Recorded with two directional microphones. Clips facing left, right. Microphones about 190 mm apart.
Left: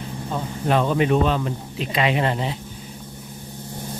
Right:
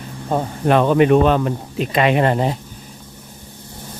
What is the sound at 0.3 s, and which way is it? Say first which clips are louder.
Speech: right 6 dB; 60° right (ahead or behind).